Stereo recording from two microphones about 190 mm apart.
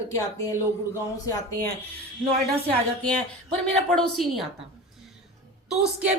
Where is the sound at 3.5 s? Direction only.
Centre (ahead or behind).